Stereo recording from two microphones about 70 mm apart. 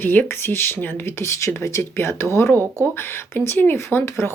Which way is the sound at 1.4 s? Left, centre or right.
Left.